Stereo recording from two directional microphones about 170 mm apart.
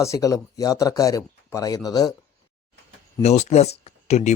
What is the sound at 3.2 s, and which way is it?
Speech, 40° left (ahead or behind).